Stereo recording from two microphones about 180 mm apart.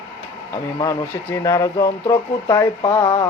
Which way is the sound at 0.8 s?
20° left (ahead or behind).